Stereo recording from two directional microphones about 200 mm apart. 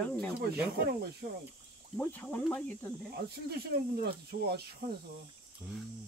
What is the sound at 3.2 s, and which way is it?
Speech, 55° right (ahead or behind).